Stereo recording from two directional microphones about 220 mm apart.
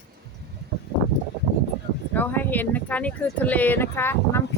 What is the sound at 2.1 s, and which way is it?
Speech, 10° left (ahead or behind).